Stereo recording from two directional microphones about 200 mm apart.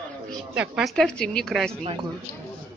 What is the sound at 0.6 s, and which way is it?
A woman's voice, centre (ahead or behind).